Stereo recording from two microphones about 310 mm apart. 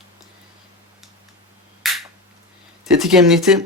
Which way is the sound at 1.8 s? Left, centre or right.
Centre.